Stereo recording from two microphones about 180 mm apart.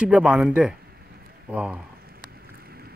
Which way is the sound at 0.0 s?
5° right (ahead or behind).